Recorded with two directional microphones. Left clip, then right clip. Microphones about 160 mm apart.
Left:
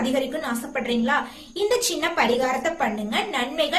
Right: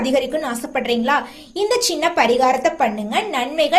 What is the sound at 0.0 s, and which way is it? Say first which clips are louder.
A woman's voice: right 6 dB; 40° right (ahead or behind).